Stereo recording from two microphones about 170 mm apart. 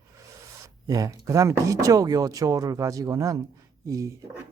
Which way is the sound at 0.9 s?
20° right (ahead or behind).